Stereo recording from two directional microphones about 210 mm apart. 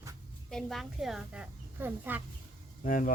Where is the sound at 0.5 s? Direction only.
Centre (ahead or behind).